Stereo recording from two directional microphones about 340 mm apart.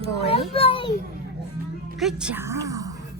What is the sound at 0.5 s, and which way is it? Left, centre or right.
Speech, centre.